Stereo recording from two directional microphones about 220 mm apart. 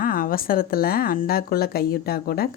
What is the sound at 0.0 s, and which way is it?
Speech, 40° left (ahead or behind).